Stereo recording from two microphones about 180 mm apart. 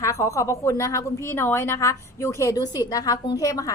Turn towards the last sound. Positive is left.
turn(degrees=20)  # may be behind; listen again after turning